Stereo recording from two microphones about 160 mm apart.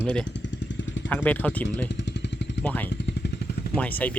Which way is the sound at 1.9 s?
90° left.